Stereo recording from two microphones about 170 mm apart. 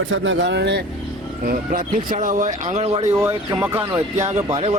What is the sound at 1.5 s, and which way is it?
Speech, 55° right (ahead or behind).